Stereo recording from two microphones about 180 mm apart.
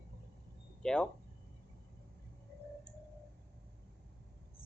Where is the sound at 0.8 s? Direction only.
5° left (ahead or behind).